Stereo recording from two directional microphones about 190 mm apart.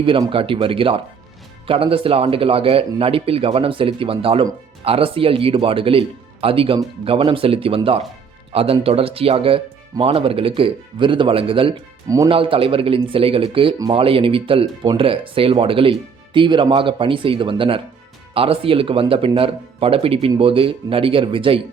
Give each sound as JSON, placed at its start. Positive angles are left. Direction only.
{"t": 0.0, "sound": "speech", "side_deg": -25}
{"t": 12.3, "sound": "speech", "side_deg": -30}